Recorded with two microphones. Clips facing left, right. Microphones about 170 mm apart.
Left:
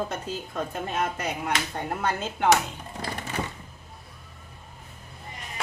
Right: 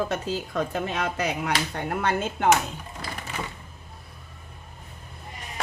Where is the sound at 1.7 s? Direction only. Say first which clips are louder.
Right 2 dB; 65° right (ahead or behind).